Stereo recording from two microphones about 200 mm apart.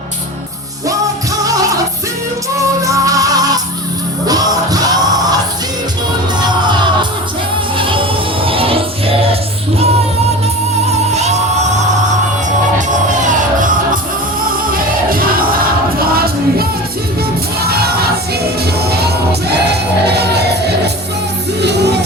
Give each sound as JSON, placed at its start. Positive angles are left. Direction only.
{"t": 2.6, "sound": "music", "side_deg": -15}
{"t": 7.8, "sound": "music", "side_deg": -25}
{"t": 11.1, "sound": "music", "side_deg": -35}
{"t": 14.7, "sound": "crowd", "side_deg": -45}
{"t": 16.0, "sound": "music", "side_deg": -50}
{"t": 17.6, "sound": "crowd", "side_deg": -50}
{"t": 18.6, "sound": "music", "side_deg": -55}